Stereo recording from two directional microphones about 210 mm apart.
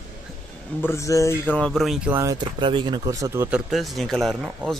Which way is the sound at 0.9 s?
15° left (ahead or behind).